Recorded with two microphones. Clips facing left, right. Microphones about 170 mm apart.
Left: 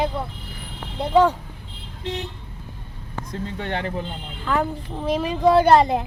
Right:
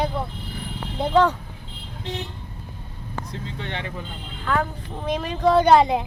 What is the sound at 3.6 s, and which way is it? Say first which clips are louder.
Speech: left 5 dB; 45° left (ahead or behind).